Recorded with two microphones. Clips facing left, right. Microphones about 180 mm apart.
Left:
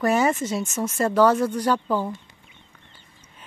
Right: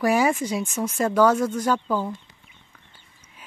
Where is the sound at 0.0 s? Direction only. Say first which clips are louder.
Even; centre (ahead or behind).